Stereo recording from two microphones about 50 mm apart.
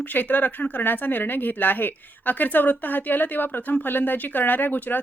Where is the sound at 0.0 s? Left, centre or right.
Left.